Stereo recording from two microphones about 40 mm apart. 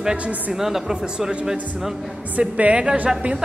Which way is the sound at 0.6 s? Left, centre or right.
Centre.